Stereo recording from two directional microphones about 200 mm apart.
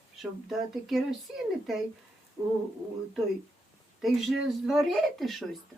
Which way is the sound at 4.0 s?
Centre (ahead or behind).